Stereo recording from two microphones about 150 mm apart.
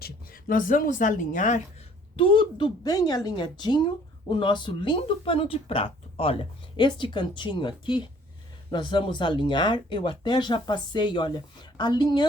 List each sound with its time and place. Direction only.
0.0 s speech: 75° left (ahead or behind); by 1.6 s 55° left (ahead or behind)
2.1 s a woman's voice: 35° left (ahead or behind)